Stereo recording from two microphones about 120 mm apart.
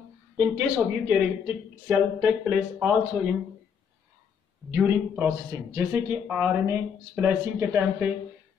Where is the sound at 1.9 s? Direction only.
10° right (ahead or behind).